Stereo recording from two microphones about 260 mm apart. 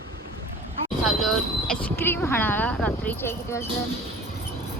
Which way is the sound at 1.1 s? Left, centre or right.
Centre.